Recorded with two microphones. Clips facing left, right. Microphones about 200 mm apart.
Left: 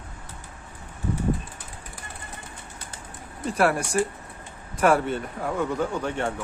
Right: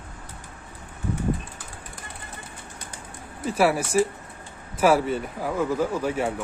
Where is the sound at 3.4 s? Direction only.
Centre (ahead or behind).